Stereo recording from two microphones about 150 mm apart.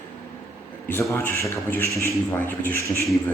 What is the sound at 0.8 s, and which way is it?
A man's voice, 15° left (ahead or behind).